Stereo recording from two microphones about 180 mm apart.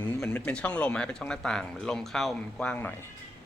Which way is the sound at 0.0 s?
10° left (ahead or behind).